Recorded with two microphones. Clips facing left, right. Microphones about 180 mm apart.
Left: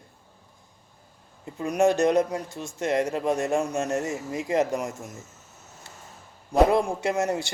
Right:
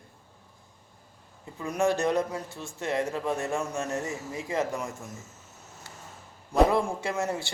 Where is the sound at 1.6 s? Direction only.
20° left (ahead or behind).